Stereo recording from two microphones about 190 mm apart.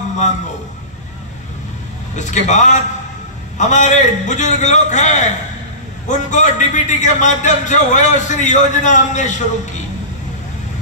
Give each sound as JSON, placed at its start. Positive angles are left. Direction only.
{"t": 2.1, "sound": "a man's voice", "side_deg": 40}